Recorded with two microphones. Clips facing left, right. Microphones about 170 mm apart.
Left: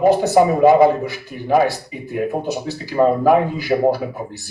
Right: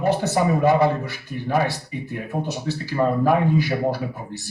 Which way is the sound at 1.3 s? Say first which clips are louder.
Left 6 dB; 45° left (ahead or behind).